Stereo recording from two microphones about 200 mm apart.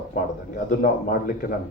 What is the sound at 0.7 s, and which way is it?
Speech, 45° left (ahead or behind).